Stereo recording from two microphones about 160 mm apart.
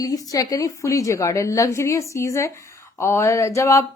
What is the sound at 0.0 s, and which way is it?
A woman's voice, 20° left (ahead or behind).